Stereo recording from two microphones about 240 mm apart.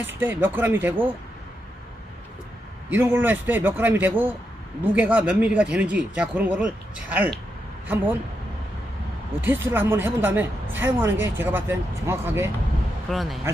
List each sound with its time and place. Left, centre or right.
0.1 s speech: centre
2.9 s speech: centre
9.4 s speech: centre